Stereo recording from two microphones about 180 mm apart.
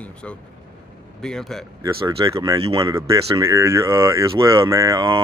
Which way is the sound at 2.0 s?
20° right (ahead or behind).